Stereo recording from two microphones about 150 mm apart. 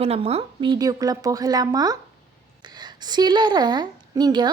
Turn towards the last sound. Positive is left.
turn(degrees=-30)  # may be behind; listen again after turning